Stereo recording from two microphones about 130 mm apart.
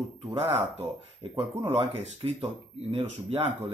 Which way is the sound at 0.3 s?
45° right (ahead or behind).